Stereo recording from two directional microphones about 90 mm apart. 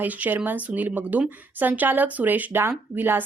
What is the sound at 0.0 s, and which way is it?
A woman's voice, 20° right (ahead or behind).